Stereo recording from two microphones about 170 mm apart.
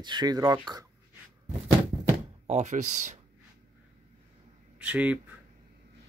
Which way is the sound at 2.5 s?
45° right (ahead or behind).